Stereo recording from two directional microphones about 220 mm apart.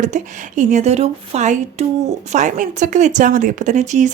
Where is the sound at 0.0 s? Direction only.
35° right (ahead or behind).